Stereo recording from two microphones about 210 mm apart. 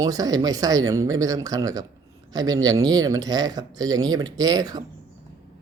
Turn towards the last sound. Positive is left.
turn(degrees=-20)  # may be behind; listen again after turning